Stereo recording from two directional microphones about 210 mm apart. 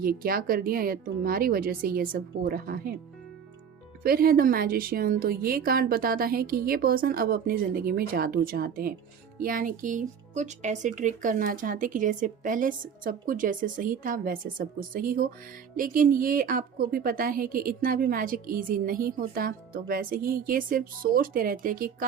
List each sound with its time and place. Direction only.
0.0 s a woman's voice: 45° right (ahead or behind)
4.0 s a woman's voice: 45° right (ahead or behind)